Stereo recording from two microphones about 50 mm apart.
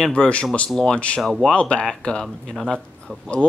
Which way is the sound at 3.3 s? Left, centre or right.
Left.